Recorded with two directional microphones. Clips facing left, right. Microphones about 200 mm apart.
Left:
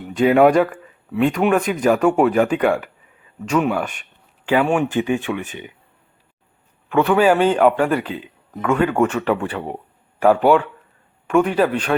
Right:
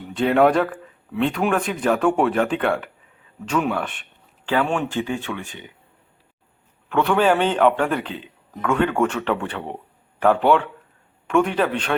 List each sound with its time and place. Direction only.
0.2 s speech: 5° left (ahead or behind)
6.8 s speech: 10° left (ahead or behind)